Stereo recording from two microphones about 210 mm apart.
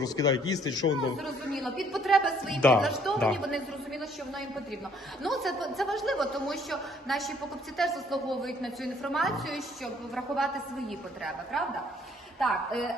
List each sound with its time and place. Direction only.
0.0 s a man's voice: 15° left (ahead or behind)
1.2 s a woman's voice: centre (ahead or behind)